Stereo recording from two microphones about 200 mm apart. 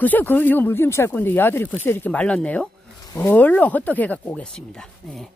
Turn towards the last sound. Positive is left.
turn(degrees=0)  # may be behind; listen again after turning